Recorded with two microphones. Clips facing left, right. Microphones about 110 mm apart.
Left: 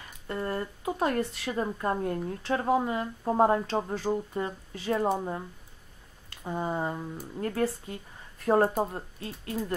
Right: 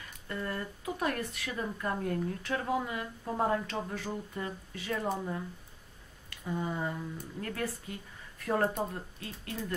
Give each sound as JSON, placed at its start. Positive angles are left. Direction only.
{"t": 0.3, "sound": "speech", "side_deg": 30}